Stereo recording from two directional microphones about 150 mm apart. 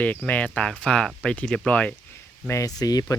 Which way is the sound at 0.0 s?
10° left (ahead or behind).